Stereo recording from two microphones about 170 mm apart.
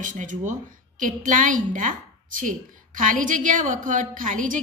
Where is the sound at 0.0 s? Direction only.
50° right (ahead or behind).